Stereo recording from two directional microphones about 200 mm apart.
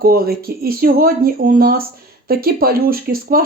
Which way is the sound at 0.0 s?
50° right (ahead or behind).